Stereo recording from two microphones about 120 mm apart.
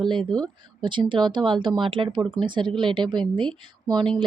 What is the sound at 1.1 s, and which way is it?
A woman's voice, 40° right (ahead or behind).